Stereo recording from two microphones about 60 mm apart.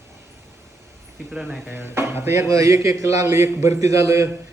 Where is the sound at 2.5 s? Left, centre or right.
Right.